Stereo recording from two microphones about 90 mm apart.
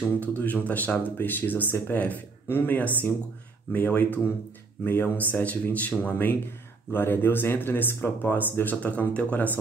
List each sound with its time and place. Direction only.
0.2 s speech: 20° left (ahead or behind)